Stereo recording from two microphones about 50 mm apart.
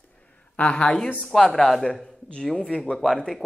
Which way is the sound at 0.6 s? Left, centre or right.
Left.